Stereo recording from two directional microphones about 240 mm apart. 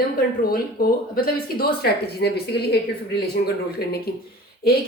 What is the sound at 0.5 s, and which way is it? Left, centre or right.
Speech, left.